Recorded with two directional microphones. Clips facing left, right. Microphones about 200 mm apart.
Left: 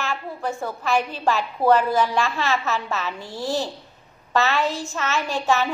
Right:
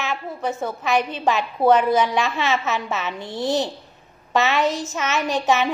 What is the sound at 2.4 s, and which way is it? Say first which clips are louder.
A child's voice: right 1 dB; 20° right (ahead or behind).